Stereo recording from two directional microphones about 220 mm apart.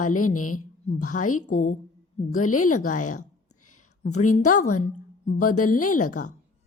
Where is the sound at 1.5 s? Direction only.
35° left (ahead or behind).